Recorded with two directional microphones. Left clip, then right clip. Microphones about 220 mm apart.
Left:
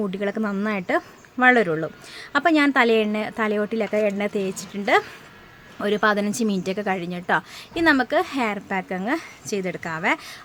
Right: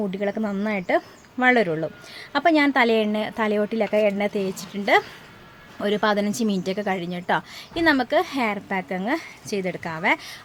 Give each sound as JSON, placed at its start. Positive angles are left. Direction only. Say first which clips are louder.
{"t": 0.0, "sound": "a woman's voice", "louder": "even", "side_deg": 10}